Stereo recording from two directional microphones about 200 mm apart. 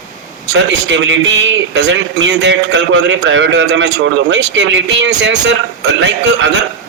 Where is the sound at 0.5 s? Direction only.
60° right (ahead or behind).